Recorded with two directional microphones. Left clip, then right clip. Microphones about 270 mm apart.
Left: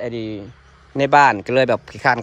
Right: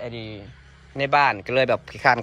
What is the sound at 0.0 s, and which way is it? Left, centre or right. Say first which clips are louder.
Speech: left 7 dB; centre.